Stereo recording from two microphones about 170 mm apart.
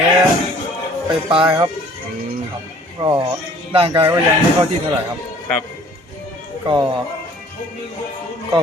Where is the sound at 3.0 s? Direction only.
25° right (ahead or behind).